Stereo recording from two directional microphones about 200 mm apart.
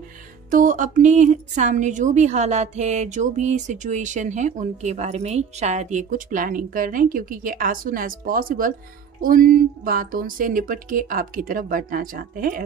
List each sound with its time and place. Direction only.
0.5 s a woman's voice: 40° right (ahead or behind)